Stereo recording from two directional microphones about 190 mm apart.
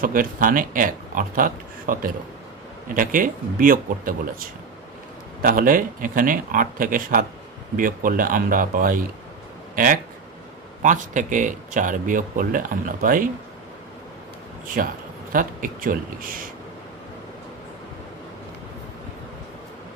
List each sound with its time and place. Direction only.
0.0 s speech: 45° right (ahead or behind)
10.8 s speech: 40° right (ahead or behind)
14.8 s speech: 45° right (ahead or behind)